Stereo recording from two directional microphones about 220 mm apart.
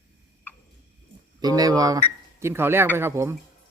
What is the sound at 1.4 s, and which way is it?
Speech, 15° right (ahead or behind).